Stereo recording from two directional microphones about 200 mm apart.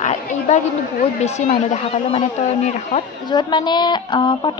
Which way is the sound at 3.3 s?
20° left (ahead or behind).